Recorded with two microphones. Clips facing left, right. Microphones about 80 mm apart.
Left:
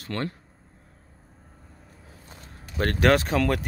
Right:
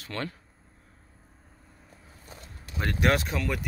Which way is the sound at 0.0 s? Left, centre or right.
Left.